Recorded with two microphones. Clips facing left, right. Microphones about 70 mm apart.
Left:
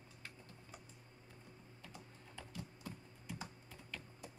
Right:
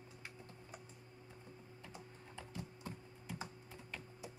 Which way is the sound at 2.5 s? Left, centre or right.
Right.